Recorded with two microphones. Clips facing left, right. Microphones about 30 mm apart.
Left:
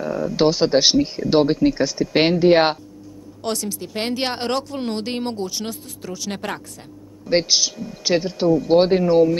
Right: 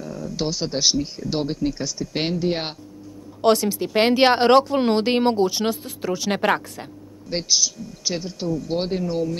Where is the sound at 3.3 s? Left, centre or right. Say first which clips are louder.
Right 8 dB; right.